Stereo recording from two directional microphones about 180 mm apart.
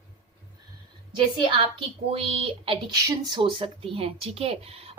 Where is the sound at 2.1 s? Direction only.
30° right (ahead or behind).